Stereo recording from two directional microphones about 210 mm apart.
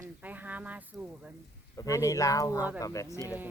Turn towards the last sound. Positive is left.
turn(degrees=-10)  # may be behind; listen again after turning